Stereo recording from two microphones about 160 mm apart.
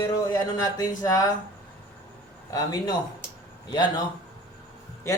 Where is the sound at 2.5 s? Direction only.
25° left (ahead or behind).